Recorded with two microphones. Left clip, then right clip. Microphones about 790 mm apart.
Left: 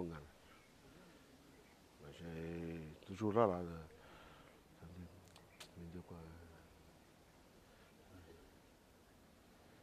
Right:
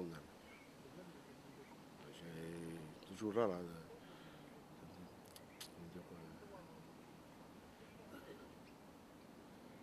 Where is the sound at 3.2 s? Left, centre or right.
Left.